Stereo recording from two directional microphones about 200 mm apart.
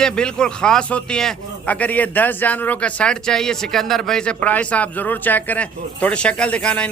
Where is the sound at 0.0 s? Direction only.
5° left (ahead or behind).